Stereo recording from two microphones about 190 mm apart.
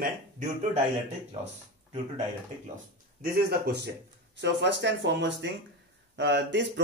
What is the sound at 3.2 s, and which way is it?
Speech, 50° right (ahead or behind).